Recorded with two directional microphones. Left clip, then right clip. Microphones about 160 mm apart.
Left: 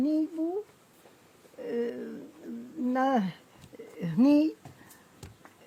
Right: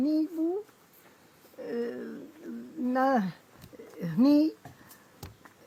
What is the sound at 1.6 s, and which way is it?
Speech, 20° left (ahead or behind).